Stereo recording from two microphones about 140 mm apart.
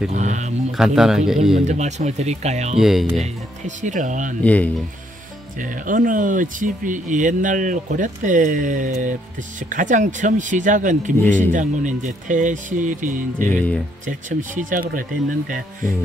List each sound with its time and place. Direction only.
0.1 s speech: 55° right (ahead or behind)
0.7 s speech: 5° right (ahead or behind)
1.6 s speech: 55° right (ahead or behind)
2.8 s speech: centre (ahead or behind)
3.6 s speech: 65° right (ahead or behind)
4.4 s speech: 10° left (ahead or behind)
5.6 s speech: 70° right (ahead or behind)
13.5 s speech: 10° left (ahead or behind)
14.0 s speech: 70° right (ahead or behind)